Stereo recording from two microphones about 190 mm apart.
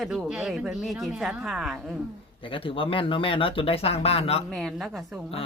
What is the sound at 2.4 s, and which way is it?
Speech, 25° left (ahead or behind).